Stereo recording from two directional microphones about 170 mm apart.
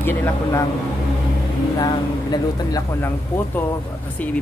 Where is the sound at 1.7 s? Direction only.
25° left (ahead or behind).